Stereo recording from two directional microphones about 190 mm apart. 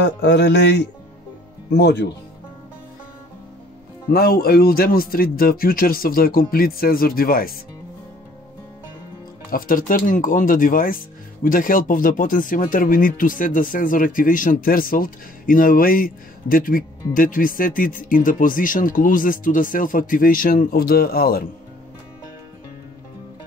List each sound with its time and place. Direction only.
0.0 s speech: 65° left (ahead or behind)
4.1 s speech: 50° left (ahead or behind)
9.5 s speech: 45° left (ahead or behind)